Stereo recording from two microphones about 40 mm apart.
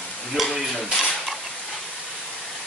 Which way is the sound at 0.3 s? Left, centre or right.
Centre.